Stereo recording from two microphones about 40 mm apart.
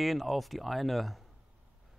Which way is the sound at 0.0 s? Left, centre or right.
Centre.